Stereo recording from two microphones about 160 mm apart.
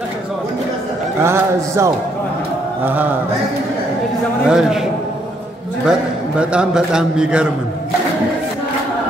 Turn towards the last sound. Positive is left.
turn(degrees=-5)  # may be behind; listen again after turning